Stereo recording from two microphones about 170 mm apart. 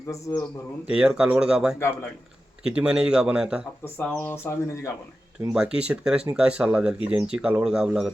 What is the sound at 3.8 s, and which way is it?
Speech, 10° left (ahead or behind).